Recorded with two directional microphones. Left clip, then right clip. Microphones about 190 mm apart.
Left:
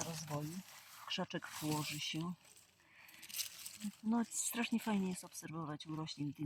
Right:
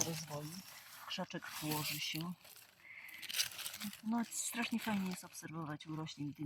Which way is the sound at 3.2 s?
30° right (ahead or behind).